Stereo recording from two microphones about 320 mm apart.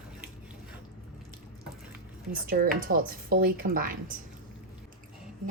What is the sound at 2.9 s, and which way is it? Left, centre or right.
A woman's voice, right.